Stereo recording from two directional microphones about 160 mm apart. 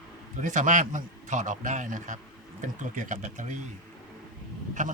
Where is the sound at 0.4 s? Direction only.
50° right (ahead or behind).